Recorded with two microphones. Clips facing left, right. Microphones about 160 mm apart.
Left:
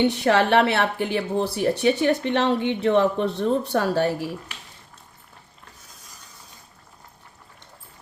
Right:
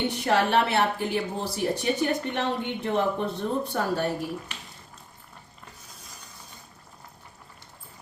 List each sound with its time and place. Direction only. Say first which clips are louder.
0.1 s speech: left 4 dB; 75° left (ahead or behind)